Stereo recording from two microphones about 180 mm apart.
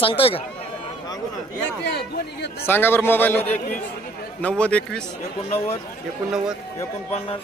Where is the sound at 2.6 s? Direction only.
10° left (ahead or behind).